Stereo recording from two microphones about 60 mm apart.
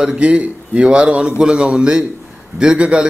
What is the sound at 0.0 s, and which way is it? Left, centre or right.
A man's voice, centre.